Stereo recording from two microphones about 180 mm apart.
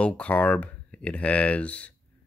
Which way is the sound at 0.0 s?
5° left (ahead or behind).